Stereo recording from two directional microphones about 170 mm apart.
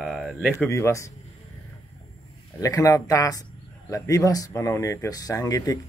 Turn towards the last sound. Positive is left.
turn(degrees=20)  # may be behind; listen again after turning